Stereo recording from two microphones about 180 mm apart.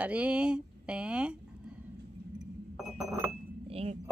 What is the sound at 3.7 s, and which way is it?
Chink, 35° right (ahead or behind).